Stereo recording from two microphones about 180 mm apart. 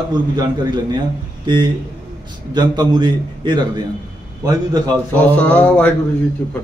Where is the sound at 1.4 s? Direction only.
25° right (ahead or behind).